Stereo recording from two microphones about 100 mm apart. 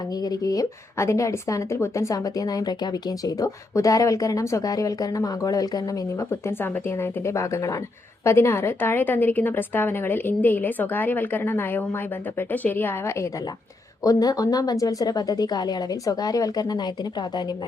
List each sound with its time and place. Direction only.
0.1 s a woman's voice: 40° left (ahead or behind)
14.0 s a woman's voice: 40° left (ahead or behind)